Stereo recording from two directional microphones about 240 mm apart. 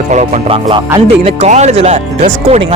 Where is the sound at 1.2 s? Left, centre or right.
Right.